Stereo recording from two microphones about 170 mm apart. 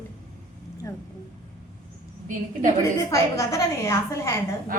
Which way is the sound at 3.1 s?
20° left (ahead or behind).